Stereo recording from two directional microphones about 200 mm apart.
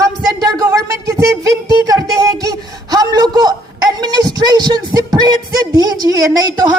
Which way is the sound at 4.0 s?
20° right (ahead or behind).